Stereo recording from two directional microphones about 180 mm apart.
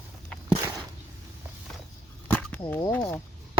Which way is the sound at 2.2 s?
10° left (ahead or behind).